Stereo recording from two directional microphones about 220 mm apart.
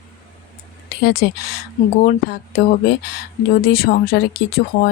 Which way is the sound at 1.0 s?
45° left (ahead or behind).